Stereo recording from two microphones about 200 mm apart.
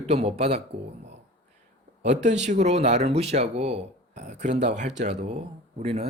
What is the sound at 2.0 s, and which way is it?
Speech, 35° right (ahead or behind).